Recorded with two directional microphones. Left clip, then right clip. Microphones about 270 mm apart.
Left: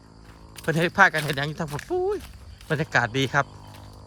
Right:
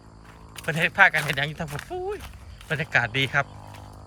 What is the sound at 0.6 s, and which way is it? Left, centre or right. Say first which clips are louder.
Speech: even; centre.